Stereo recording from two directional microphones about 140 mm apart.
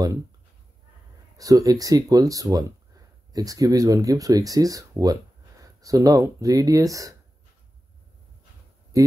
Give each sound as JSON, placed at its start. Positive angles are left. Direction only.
{"t": 1.4, "sound": "speech", "side_deg": -25}
{"t": 8.9, "sound": "speech", "side_deg": -25}